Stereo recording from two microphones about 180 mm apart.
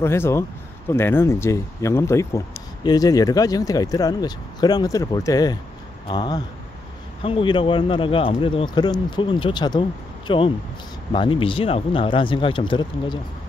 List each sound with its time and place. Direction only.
0.0 s speech: 15° left (ahead or behind)